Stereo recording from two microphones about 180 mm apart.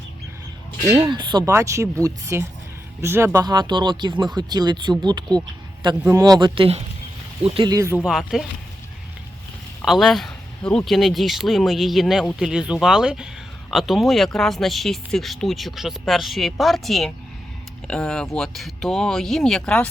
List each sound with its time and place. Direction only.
1.1 s speech: 25° right (ahead or behind)
7.9 s speech: centre (ahead or behind)
9.8 s speech: centre (ahead or behind)